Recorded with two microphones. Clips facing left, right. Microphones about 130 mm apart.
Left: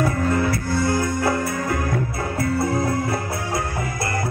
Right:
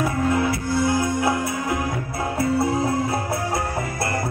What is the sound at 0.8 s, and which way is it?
Music, 15° right (ahead or behind).